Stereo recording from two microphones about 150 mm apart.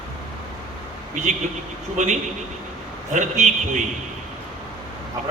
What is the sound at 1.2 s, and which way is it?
Speech, 55° right (ahead or behind).